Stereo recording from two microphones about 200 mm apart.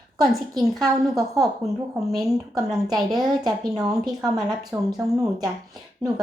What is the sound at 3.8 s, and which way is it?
A child's voice, 20° right (ahead or behind).